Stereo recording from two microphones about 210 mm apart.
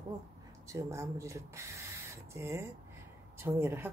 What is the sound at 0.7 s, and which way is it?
Speech, 15° right (ahead or behind).